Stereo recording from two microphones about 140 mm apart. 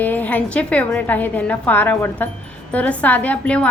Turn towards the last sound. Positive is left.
turn(degrees=10)  # may be behind; listen again after turning